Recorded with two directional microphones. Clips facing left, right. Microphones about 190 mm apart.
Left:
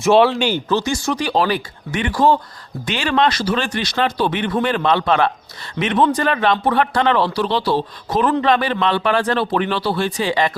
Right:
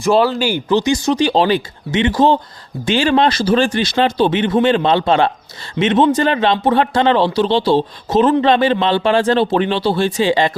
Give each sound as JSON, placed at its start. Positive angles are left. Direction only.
{"t": 0.0, "sound": "speech", "side_deg": 0}